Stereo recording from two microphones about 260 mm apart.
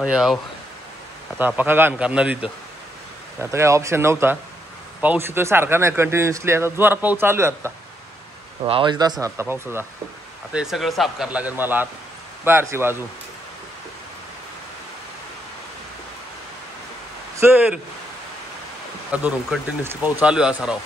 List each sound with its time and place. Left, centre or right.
0.0 s speech: centre
1.4 s a man's voice: centre
17.4 s speech: centre
19.1 s speech: centre